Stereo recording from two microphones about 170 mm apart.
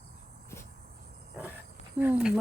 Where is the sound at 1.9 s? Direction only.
10° right (ahead or behind).